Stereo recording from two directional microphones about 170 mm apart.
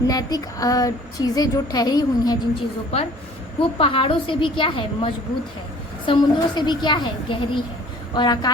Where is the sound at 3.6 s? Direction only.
30° left (ahead or behind).